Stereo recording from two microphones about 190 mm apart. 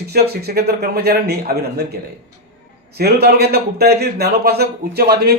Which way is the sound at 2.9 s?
55° right (ahead or behind).